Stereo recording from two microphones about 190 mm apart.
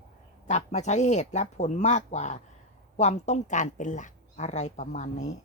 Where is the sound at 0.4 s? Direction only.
35° left (ahead or behind).